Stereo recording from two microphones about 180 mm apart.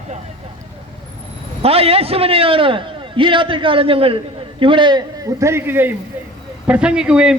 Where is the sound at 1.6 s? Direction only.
35° right (ahead or behind).